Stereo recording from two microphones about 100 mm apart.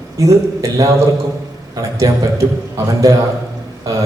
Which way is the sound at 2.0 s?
40° right (ahead or behind).